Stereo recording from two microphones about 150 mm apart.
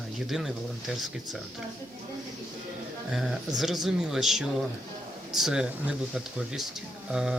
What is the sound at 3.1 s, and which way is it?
Speech, centre (ahead or behind).